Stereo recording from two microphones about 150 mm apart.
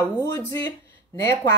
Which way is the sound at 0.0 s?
20° left (ahead or behind).